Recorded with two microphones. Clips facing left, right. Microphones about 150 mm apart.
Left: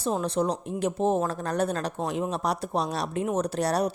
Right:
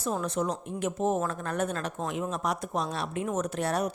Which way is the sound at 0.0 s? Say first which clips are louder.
Left 4 dB; 30° left (ahead or behind).